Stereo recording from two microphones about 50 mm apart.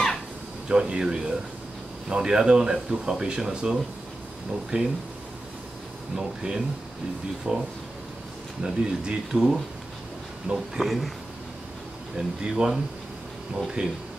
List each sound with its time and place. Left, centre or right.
0.7 s speech: centre
4.7 s speech: right
6.1 s speech: centre
8.6 s speech: centre
10.5 s speech: centre
12.2 s speech: centre